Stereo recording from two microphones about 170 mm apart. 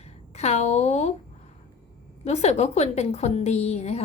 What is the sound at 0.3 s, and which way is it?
Speech, 40° left (ahead or behind).